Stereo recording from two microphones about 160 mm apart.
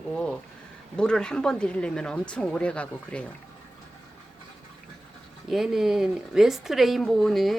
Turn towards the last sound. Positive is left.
turn(degrees=0)  # may be behind; listen again after turning